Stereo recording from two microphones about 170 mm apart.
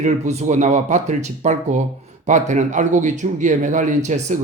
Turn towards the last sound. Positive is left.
turn(degrees=-45)  # may be behind; listen again after turning